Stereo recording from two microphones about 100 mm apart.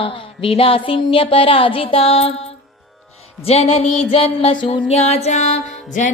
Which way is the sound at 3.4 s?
90° left.